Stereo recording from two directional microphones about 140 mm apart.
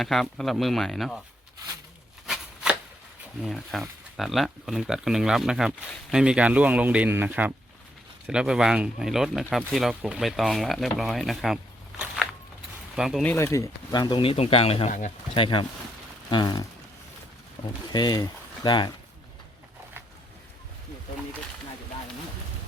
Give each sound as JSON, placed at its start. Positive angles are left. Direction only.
{"t": 0.0, "sound": "speech", "side_deg": 0}
{"t": 2.2, "sound": "shuffling cards", "side_deg": -5}
{"t": 3.4, "sound": "speech", "side_deg": 0}
{"t": 13.2, "sound": "speech", "side_deg": 20}